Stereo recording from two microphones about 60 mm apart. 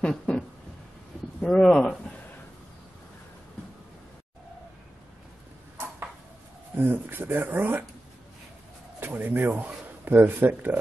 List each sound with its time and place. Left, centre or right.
0.0 s a sound: centre
1.4 s speech: centre
6.8 s speech: right
9.0 s a man's voice: right